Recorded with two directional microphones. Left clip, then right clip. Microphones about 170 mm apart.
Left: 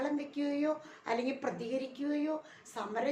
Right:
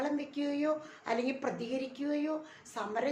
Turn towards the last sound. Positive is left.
turn(degrees=-5)  # may be behind; listen again after turning